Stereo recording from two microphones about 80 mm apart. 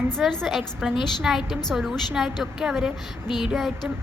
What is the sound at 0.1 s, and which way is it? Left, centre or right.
A woman's voice, centre.